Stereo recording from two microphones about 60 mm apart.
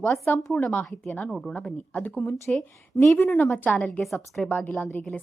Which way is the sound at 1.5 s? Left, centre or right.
Left.